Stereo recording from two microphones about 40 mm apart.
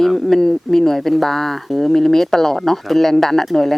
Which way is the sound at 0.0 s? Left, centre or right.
Centre.